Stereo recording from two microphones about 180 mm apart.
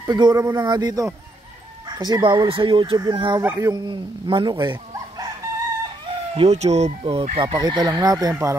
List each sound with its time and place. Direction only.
0.0 s speech: 25° right (ahead or behind)
6.3 s speech: 35° right (ahead or behind)